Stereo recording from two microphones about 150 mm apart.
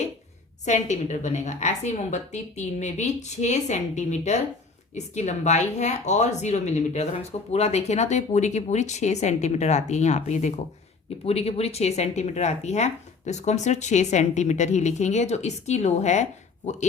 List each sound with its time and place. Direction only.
0.6 s speech: 50° left (ahead or behind)